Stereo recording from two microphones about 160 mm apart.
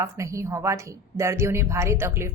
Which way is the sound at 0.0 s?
20° right (ahead or behind).